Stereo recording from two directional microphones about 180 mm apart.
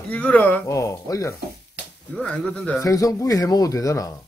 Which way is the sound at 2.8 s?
20° left (ahead or behind).